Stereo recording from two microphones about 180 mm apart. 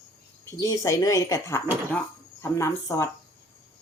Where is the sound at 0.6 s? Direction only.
20° left (ahead or behind).